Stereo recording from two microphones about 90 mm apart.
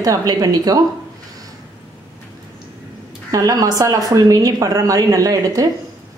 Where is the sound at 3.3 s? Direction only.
40° right (ahead or behind).